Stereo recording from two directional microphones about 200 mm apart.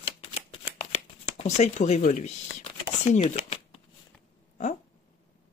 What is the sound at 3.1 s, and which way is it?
Shuffling cards, 35° left (ahead or behind).